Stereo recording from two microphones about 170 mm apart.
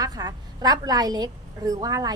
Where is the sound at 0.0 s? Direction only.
20° right (ahead or behind).